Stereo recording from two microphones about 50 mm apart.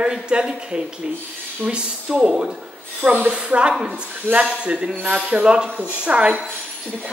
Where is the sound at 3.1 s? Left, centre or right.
Right.